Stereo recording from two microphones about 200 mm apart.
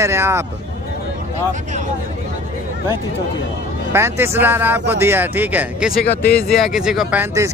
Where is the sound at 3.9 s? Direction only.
10° right (ahead or behind).